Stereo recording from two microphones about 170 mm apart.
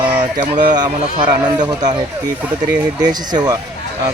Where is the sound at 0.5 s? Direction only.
25° right (ahead or behind).